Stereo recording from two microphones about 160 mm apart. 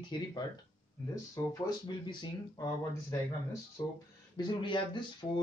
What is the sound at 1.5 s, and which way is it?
Speech, 25° left (ahead or behind).